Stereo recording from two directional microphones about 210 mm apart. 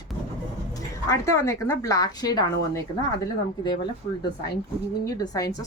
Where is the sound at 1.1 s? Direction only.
15° left (ahead or behind).